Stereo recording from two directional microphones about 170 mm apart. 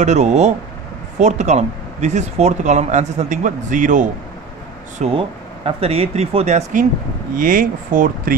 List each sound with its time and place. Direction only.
0.0 s speech: 40° right (ahead or behind)
4.9 s speech: 40° right (ahead or behind); by 8.4 s 55° right (ahead or behind)